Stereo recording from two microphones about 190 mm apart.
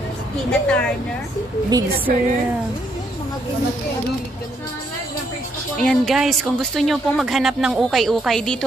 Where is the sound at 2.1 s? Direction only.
50° right (ahead or behind).